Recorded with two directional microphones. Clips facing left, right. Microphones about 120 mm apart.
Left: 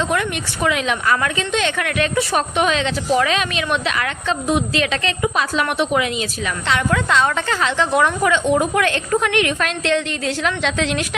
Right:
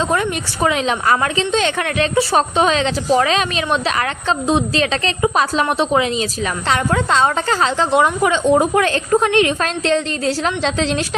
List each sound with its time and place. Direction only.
0.0 s a woman's voice: 35° right (ahead or behind)